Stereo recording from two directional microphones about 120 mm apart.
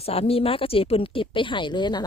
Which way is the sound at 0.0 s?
55° left (ahead or behind).